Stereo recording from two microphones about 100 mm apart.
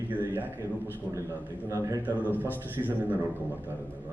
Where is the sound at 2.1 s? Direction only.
15° left (ahead or behind).